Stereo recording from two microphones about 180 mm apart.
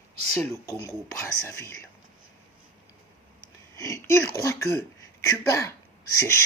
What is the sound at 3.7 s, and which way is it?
Speech, 15° left (ahead or behind).